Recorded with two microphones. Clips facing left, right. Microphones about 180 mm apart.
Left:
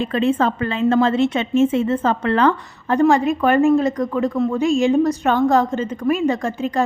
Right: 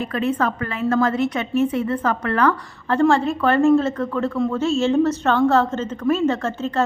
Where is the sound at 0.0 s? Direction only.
25° left (ahead or behind).